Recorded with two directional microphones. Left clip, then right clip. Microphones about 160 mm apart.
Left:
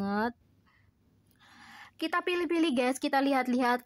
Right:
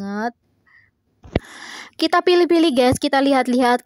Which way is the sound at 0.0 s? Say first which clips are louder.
Right 6 dB; 30° right (ahead or behind).